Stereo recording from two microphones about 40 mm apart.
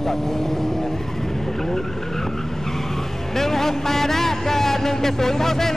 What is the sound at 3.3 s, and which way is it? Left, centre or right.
Speech, centre.